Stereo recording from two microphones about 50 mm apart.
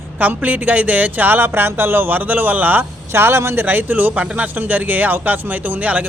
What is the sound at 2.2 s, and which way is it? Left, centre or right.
Speech, right.